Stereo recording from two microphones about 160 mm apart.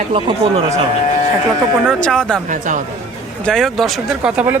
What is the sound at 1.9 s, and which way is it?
Speech, 5° left (ahead or behind).